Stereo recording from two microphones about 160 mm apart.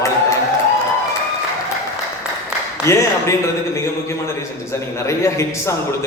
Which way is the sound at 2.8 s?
20° left (ahead or behind).